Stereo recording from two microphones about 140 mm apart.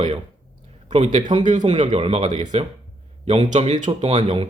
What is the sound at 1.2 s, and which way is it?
Speech, 35° right (ahead or behind).